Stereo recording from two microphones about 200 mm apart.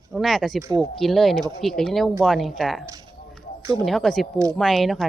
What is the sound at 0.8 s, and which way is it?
Speech, centre (ahead or behind).